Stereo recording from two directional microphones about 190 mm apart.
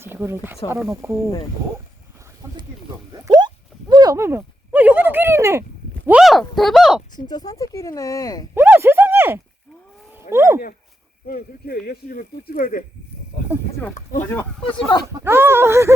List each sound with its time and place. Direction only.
0.0 s speech: 15° right (ahead or behind)
3.2 s a sound: 20° right (ahead or behind)
6.1 s speech: 5° right (ahead or behind)
7.3 s speech: 20° left (ahead or behind)
8.5 s a sound: 10° right (ahead or behind)
10.2 s speech: 15° right (ahead or behind)
11.3 s speech: 50° left (ahead or behind)
13.9 s speech: 40° left (ahead or behind)
14.6 s speech: 25° left (ahead or behind)
15.0 s speech: 10° right (ahead or behind)